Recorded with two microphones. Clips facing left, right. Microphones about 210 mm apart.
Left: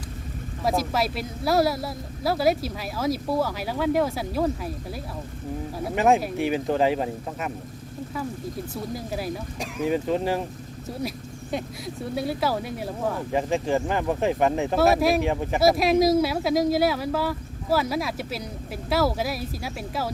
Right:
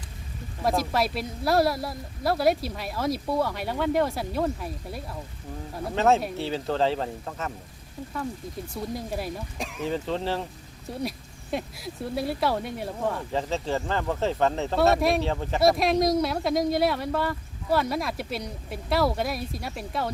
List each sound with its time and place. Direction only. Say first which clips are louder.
0.6 s speech: even; centre (ahead or behind)
5.9 s speech: left 1 dB; 15° left (ahead or behind)
8.7 s speech: right 2 dB; centre (ahead or behind)
9.8 s speech: left 5 dB; 10° left (ahead or behind)
11.5 s speech: left 1 dB; centre (ahead or behind)
13.3 s speech: left 4 dB; 15° left (ahead or behind)
14.8 s speech: left 1 dB; centre (ahead or behind)
15.2 s speech: left 3 dB; 15° left (ahead or behind)
15.6 s speech: left 2 dB; 5° left (ahead or behind)